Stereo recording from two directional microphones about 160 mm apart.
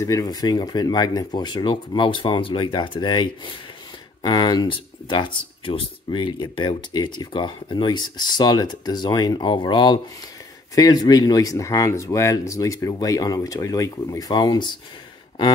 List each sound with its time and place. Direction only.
0.0 s speech: 20° left (ahead or behind)